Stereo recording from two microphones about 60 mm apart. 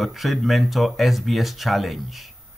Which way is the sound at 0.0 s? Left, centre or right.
Centre.